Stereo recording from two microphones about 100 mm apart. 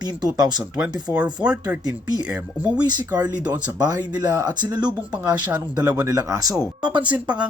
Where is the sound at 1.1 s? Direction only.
10° right (ahead or behind).